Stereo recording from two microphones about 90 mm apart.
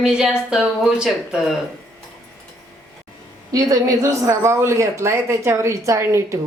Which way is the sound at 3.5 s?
40° right (ahead or behind).